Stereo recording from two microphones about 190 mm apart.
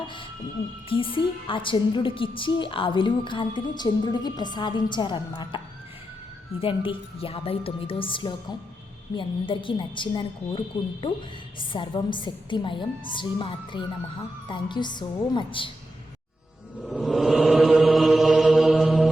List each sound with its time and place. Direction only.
0.9 s a woman's voice: 25° left (ahead or behind)
6.6 s a woman's voice: 30° left (ahead or behind)
16.8 s mantra: 5° left (ahead or behind)